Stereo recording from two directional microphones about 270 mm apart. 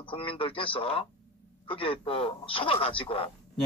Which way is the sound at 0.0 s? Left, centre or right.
Centre.